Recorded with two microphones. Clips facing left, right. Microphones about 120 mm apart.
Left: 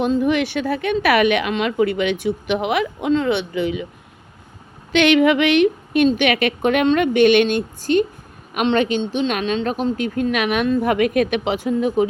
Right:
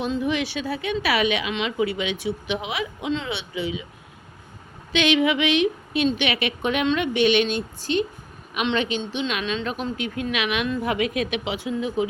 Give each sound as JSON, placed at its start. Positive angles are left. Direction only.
{"t": 0.0, "sound": "a woman's voice", "side_deg": 55}
{"t": 4.9, "sound": "a woman's voice", "side_deg": 55}